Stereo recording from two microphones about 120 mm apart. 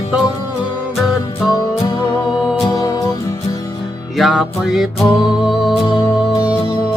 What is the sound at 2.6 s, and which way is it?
Music, 35° left (ahead or behind).